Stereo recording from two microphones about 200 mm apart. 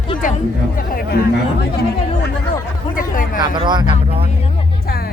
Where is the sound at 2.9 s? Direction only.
45° left (ahead or behind).